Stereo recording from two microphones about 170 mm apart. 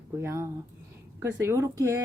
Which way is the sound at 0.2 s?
15° right (ahead or behind).